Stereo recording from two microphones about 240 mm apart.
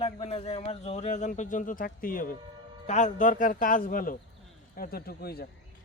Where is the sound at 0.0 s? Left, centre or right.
Left.